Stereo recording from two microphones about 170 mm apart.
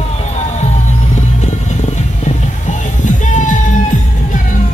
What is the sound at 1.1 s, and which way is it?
Music, 45° left (ahead or behind).